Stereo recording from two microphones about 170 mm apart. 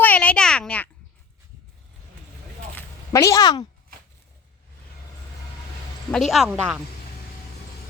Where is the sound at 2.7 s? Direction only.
15° left (ahead or behind).